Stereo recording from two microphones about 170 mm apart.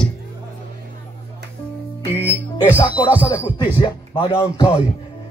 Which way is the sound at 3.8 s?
30° left (ahead or behind).